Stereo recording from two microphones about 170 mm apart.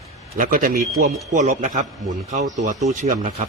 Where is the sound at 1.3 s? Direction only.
45° right (ahead or behind).